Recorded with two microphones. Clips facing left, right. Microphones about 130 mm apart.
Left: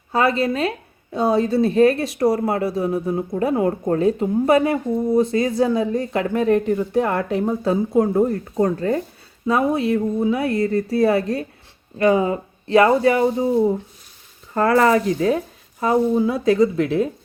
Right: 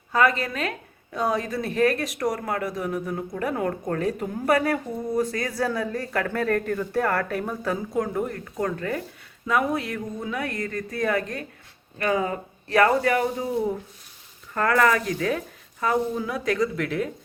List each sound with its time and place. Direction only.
0.1 s a woman's voice: 30° left (ahead or behind)